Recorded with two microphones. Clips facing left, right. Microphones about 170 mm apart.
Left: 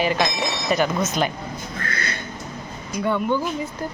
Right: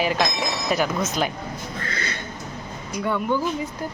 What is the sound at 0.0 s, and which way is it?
Speech, centre (ahead or behind).